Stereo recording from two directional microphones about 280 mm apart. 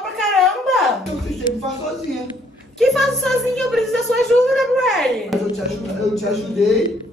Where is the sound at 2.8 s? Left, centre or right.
Centre.